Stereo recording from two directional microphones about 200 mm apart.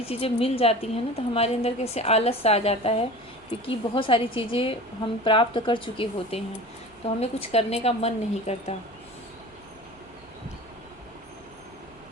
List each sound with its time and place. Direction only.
0.1 s a woman's voice: 30° left (ahead or behind)